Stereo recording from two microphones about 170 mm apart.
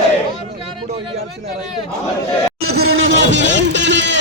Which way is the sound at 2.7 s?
90° right.